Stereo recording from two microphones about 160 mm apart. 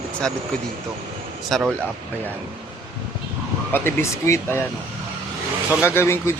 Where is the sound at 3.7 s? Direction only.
15° left (ahead or behind).